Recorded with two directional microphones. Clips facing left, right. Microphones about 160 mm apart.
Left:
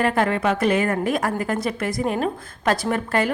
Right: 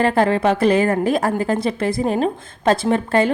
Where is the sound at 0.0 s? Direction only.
30° right (ahead or behind).